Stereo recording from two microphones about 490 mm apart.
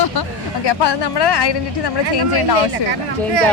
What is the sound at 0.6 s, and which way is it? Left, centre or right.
Speech, left.